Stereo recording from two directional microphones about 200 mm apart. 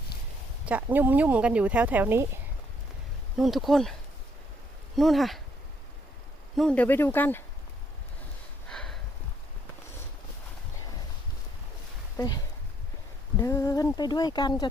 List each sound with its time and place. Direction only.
0.6 s speech: 5° right (ahead or behind)
3.3 s speech: centre (ahead or behind)
4.9 s speech: centre (ahead or behind)
6.6 s speech: 5° left (ahead or behind)
8.7 s a sound: 5° left (ahead or behind)
12.1 s speech: 20° left (ahead or behind)
13.4 s speech: 15° left (ahead or behind)